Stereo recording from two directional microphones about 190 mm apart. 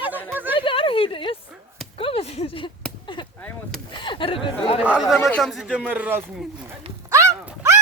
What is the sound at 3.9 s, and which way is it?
Chatter, 25° left (ahead or behind).